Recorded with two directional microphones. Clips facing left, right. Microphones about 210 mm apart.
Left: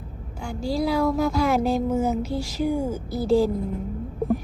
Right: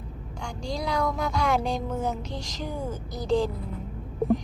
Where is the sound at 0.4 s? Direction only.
5° left (ahead or behind).